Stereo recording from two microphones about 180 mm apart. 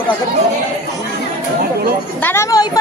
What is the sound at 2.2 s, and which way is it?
Speech, 15° left (ahead or behind).